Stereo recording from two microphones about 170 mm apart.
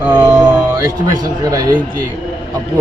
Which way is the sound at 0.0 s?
15° right (ahead or behind).